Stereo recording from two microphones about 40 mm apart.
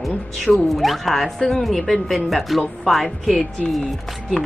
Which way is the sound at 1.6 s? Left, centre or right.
Centre.